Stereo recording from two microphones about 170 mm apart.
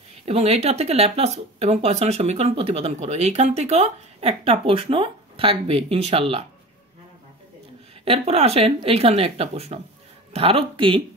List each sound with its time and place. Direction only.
0.2 s speech: 35° right (ahead or behind)
8.0 s speech: 35° right (ahead or behind)